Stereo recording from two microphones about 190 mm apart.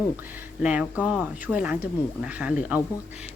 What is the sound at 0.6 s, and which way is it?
Speech, 5° right (ahead or behind).